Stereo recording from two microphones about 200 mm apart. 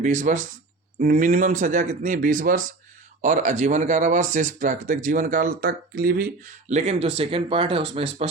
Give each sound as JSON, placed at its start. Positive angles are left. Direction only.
{"t": 0.0, "sound": "speech", "side_deg": -40}
{"t": 6.7, "sound": "speech", "side_deg": -35}